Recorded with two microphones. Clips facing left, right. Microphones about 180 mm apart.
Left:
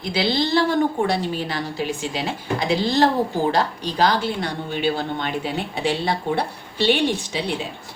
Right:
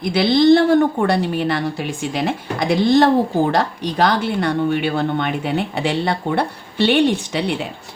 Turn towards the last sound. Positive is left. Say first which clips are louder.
# right 4 dB
turn(degrees=-65)  # may be behind; listen again after turning